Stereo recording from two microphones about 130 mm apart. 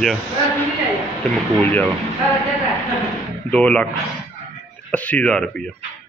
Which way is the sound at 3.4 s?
10° left (ahead or behind).